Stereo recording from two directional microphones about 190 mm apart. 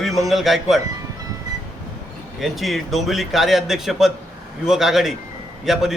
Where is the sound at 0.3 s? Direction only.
Centre (ahead or behind).